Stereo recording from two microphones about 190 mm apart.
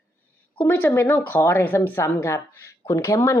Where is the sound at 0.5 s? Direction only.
10° left (ahead or behind).